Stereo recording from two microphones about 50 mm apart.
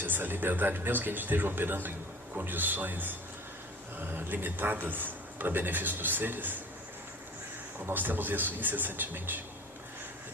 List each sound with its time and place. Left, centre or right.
0.0 s a man's voice: right
7.9 s a man's voice: right